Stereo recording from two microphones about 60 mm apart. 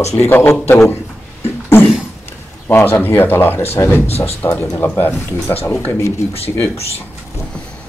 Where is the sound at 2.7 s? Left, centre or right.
Left.